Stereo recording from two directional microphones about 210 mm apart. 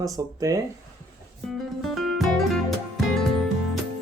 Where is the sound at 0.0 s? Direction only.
15° right (ahead or behind).